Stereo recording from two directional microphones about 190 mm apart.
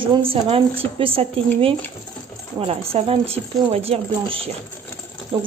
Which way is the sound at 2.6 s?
30° right (ahead or behind).